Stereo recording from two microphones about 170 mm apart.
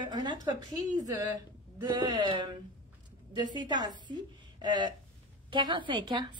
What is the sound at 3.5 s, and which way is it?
A woman's voice, 25° right (ahead or behind).